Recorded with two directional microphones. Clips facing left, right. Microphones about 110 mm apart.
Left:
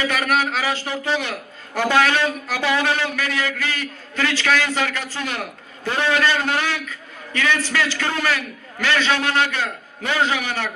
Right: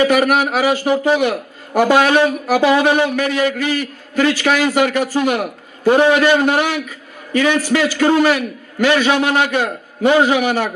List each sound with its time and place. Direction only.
0.0 s a man's voice: 15° right (ahead or behind)